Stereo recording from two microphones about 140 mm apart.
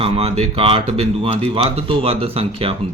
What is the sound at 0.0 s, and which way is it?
Speech, 45° right (ahead or behind).